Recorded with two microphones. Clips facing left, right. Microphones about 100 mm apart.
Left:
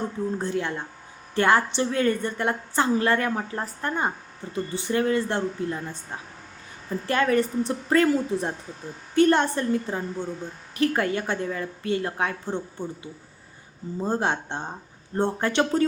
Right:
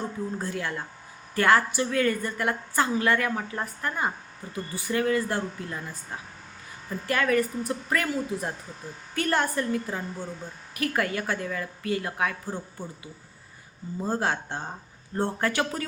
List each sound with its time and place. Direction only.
0.3 s a woman's voice: 25° left (ahead or behind)
7.1 s a woman's voice: 30° left (ahead or behind)